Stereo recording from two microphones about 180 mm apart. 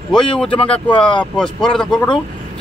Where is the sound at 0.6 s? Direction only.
30° left (ahead or behind).